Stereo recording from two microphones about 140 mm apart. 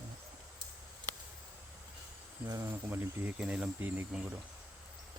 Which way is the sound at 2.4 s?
25° right (ahead or behind).